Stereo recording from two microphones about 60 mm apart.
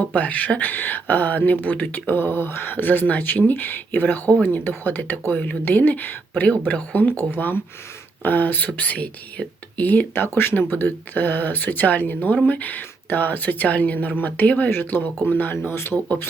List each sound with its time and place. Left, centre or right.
0.1 s a woman's voice: left
14.7 s speech: left